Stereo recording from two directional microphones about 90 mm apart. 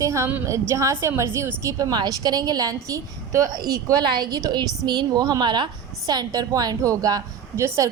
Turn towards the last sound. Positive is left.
turn(degrees=-30)  # may be behind; listen again after turning